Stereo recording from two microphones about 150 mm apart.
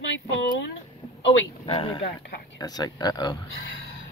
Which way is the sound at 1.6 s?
35° left (ahead or behind).